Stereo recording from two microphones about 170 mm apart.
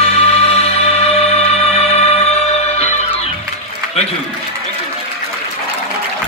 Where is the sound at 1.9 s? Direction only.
40° left (ahead or behind).